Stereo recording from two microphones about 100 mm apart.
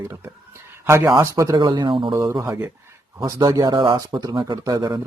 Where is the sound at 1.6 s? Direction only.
45° right (ahead or behind).